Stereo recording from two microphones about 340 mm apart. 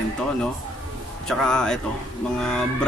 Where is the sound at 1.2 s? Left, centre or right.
Centre.